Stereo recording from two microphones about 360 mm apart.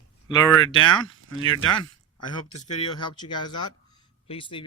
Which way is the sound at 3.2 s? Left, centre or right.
Centre.